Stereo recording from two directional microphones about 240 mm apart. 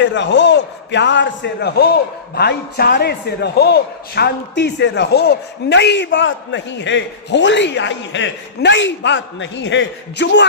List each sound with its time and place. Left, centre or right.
0.0 s a man's voice: left